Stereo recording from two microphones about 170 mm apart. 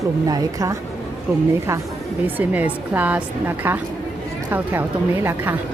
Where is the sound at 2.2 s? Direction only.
10° right (ahead or behind).